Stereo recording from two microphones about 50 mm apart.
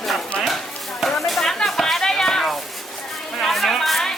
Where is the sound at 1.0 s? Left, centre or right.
Centre.